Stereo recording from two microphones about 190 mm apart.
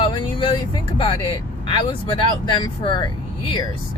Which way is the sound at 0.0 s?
25° left (ahead or behind).